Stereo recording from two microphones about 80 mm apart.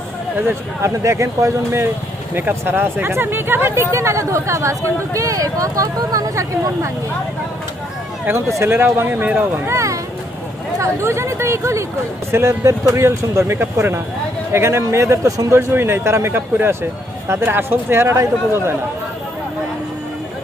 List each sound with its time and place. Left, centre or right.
0.8 s speech: right
2.4 s speech: right
8.5 s speech: right
9.6 s speech: right